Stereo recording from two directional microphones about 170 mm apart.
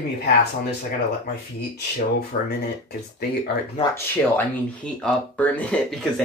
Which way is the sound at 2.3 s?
65° left (ahead or behind).